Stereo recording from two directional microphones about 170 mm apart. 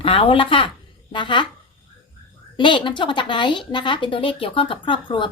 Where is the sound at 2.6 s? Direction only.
30° left (ahead or behind).